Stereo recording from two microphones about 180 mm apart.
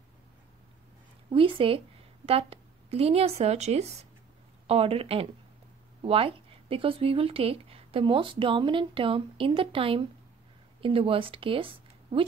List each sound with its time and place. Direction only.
1.3 s a woman's voice: 30° right (ahead or behind)